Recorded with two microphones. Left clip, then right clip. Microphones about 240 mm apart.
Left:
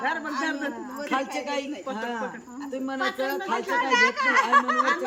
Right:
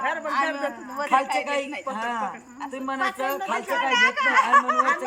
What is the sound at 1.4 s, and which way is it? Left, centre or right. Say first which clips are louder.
Speech: right 3 dB; centre.